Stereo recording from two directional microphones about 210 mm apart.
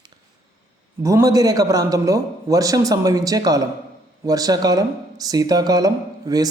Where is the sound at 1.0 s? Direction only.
15° right (ahead or behind).